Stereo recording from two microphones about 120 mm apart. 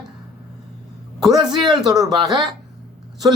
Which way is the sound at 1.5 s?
35° right (ahead or behind).